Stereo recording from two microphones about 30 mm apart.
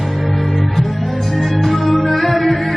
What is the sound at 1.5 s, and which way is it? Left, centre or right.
Music, centre.